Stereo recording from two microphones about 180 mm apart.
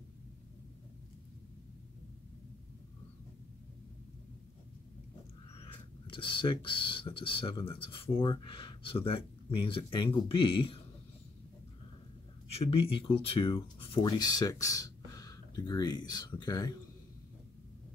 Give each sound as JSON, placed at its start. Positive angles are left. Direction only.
{"t": 5.6, "sound": "speech", "side_deg": 30}
{"t": 12.4, "sound": "speech", "side_deg": 30}